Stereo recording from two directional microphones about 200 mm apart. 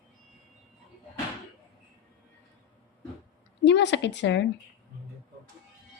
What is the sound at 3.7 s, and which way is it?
Speech, 60° left (ahead or behind).